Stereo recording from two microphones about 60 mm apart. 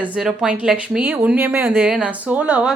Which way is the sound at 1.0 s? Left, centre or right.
Right.